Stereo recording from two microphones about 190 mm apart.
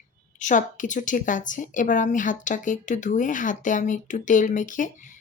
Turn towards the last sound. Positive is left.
turn(degrees=45)  # may be behind; listen again after turning